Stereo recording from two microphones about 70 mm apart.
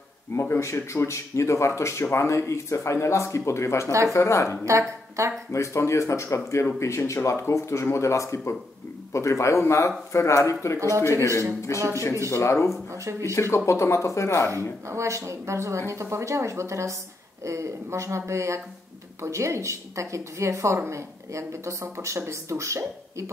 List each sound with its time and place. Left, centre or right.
0.3 s speech: left
4.6 s a woman's voice: right
5.5 s speech: left
12.3 s speech: left
12.9 s a woman's voice: right
13.3 s speech: left
14.5 s a woman's voice: right